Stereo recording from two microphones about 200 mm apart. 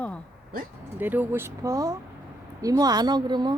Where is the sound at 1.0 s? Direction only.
10° right (ahead or behind).